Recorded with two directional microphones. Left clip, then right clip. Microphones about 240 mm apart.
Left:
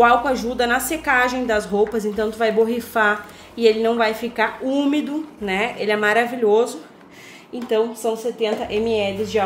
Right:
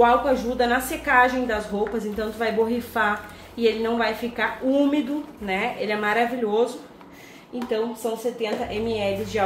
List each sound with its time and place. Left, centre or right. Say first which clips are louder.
0.0 s a woman's voice: left 3 dB; left